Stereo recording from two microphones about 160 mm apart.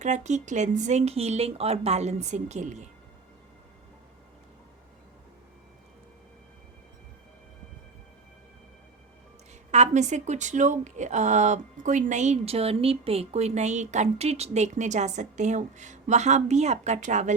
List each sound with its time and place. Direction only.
0.0 s a woman's voice: 45° right (ahead or behind)
9.7 s a woman's voice: 45° right (ahead or behind)